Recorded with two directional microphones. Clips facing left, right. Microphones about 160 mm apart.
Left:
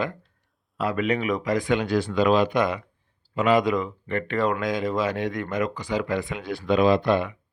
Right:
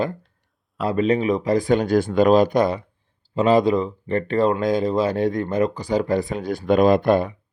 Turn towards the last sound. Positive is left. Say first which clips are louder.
# right 4 dB
turn(degrees=-45)  # may be behind; listen again after turning